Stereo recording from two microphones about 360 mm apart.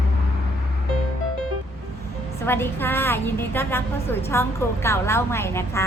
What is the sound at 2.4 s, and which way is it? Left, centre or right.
A woman's voice, centre.